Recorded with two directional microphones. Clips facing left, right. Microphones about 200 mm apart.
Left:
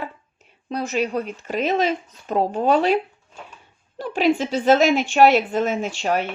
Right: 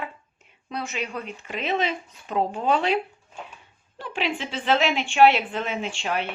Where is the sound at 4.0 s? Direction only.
40° left (ahead or behind).